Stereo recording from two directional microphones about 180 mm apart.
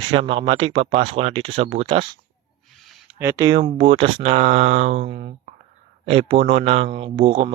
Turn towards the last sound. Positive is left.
turn(degrees=-30)  # may be behind; listen again after turning